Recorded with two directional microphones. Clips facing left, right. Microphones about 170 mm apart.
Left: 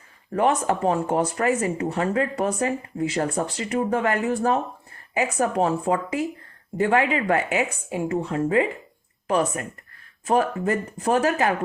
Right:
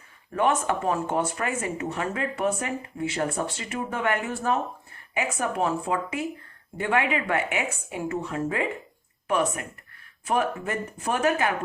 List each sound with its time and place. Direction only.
0.3 s speech: 35° left (ahead or behind)
10.2 s speech: 35° left (ahead or behind)